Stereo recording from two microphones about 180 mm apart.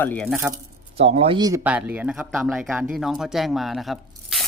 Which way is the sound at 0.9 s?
35° right (ahead or behind).